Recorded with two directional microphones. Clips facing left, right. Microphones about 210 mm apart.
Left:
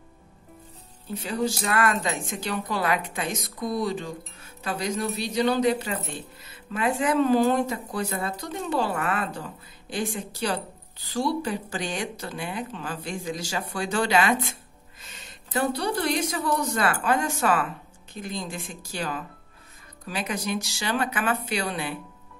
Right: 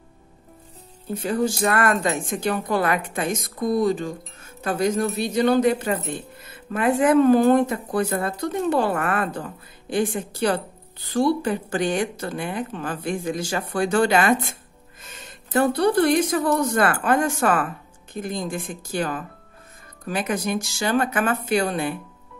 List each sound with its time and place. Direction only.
1.1 s speech: 50° right (ahead or behind)